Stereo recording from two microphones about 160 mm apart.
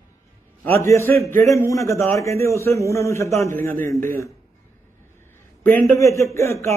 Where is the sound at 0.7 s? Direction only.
15° left (ahead or behind).